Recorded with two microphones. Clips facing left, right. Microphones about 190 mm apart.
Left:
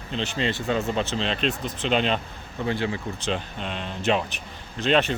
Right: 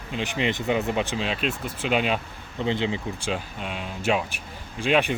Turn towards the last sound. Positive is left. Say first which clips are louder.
# even
turn(degrees=-10)  # may be behind; listen again after turning